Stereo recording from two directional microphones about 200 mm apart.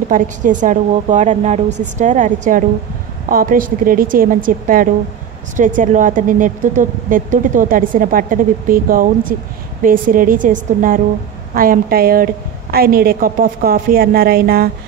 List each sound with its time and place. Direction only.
0.1 s a woman's voice: 40° right (ahead or behind)